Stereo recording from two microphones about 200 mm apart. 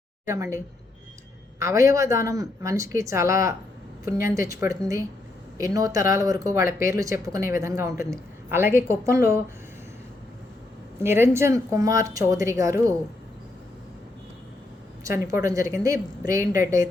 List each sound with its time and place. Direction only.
0.3 s speech: 15° right (ahead or behind)
11.0 s speech: 10° right (ahead or behind)
15.0 s speech: 15° right (ahead or behind)